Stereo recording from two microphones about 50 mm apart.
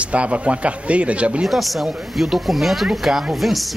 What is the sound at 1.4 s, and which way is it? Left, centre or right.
Speech, centre.